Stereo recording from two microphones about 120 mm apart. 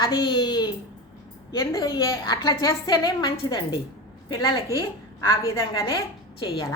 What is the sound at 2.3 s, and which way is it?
A woman's voice, 30° left (ahead or behind).